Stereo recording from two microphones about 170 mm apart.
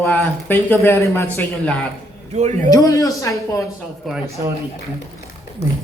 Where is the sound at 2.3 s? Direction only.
40° right (ahead or behind).